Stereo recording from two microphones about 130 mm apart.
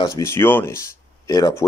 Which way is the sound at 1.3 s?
30° left (ahead or behind).